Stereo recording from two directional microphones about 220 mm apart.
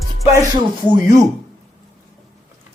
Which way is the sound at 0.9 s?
15° right (ahead or behind).